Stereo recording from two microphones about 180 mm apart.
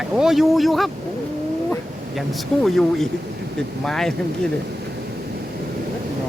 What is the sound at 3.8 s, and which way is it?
Speech, 5° left (ahead or behind).